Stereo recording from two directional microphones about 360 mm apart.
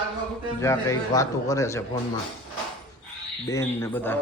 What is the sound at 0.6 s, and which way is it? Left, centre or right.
A man's voice, centre.